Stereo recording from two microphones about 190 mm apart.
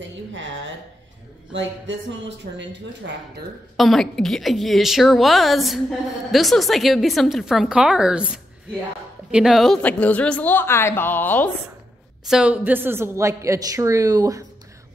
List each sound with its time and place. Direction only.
0.0 s a sound: 80° right
1.5 s speech: 75° right (ahead or behind)
3.7 s a woman's voice: centre (ahead or behind)
12.3 s a woman's voice: 5° right (ahead or behind)